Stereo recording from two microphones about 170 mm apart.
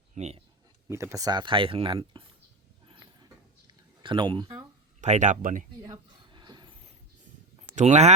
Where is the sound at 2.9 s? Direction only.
25° right (ahead or behind).